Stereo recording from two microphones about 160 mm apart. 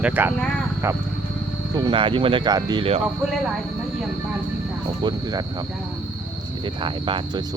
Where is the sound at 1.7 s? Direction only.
30° right (ahead or behind).